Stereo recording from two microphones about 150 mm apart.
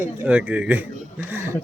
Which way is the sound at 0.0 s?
15° right (ahead or behind).